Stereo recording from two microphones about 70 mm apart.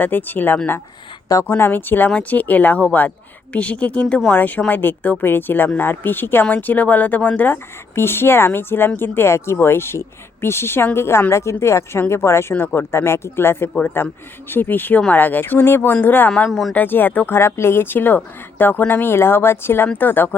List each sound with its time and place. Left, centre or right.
0.0 s speech: left
16.5 s speech: centre
16.7 s speech: left